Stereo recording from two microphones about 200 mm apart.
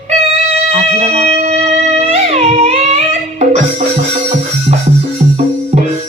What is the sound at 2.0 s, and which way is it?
Music, 30° right (ahead or behind).